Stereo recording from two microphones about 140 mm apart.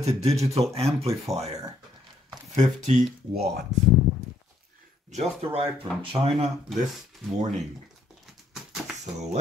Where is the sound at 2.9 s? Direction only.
60° right (ahead or behind).